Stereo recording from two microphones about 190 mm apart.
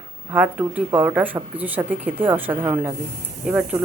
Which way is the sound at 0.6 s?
15° right (ahead or behind).